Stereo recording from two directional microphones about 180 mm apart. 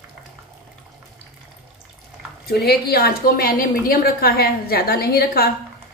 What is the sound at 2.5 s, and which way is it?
A woman's voice, 60° left (ahead or behind).